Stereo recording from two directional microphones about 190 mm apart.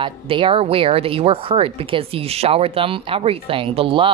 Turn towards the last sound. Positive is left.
turn(degrees=-30)  # may be behind; listen again after turning